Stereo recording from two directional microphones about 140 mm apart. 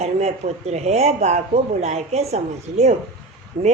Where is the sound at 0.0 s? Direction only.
50° right (ahead or behind).